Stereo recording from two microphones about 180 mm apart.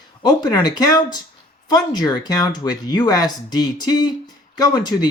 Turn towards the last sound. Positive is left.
turn(degrees=25)  # may be behind; listen again after turning